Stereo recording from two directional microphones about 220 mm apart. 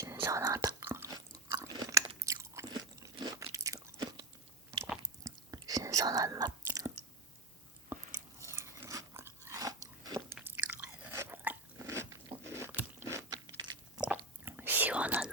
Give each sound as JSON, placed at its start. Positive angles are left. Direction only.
{"t": 0.0, "sound": "whispering", "side_deg": -10}
{"t": 1.5, "sound": "crunch", "side_deg": -15}
{"t": 5.2, "sound": "whispering", "side_deg": -15}
{"t": 8.4, "sound": "biting", "side_deg": -10}
{"t": 14.0, "sound": "whispering", "side_deg": -5}